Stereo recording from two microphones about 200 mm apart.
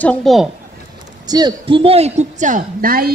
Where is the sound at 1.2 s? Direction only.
20° right (ahead or behind); by 3.1 s 45° right (ahead or behind).